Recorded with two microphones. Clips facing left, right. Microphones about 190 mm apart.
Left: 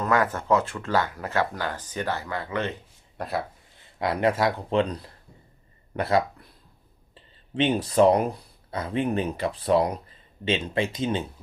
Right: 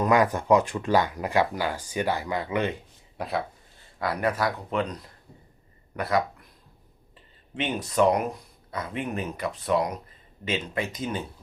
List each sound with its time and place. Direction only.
0.0 s speech: 15° right (ahead or behind)
3.2 s speech: centre (ahead or behind)
3.9 s speech: 25° left (ahead or behind)
7.5 s speech: 30° left (ahead or behind)